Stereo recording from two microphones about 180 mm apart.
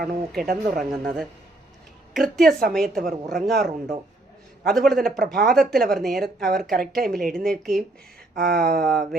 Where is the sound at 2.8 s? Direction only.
55° right (ahead or behind).